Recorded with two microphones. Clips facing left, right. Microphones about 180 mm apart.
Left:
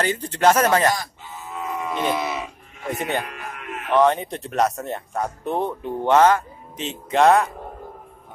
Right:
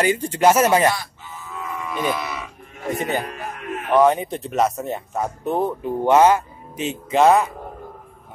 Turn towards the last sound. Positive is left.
turn(degrees=0)  # may be behind; listen again after turning